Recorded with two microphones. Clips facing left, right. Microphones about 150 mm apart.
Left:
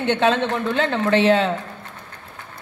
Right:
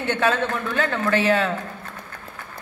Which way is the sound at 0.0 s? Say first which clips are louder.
Left 3 dB; 25° left (ahead or behind).